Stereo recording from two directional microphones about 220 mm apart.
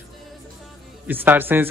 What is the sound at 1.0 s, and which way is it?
Speech, 10° right (ahead or behind).